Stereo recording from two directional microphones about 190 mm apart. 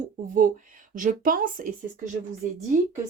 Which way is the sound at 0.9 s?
45° right (ahead or behind).